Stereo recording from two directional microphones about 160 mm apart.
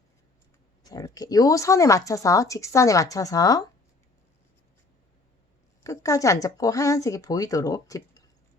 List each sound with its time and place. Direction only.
0.9 s speech: 20° left (ahead or behind)
5.8 s speech: 20° left (ahead or behind)